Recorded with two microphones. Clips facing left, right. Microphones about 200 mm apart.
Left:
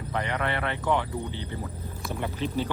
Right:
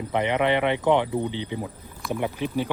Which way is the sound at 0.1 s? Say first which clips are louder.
Right 7 dB; 20° right (ahead or behind).